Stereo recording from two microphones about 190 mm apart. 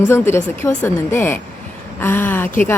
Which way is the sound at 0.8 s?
10° left (ahead or behind).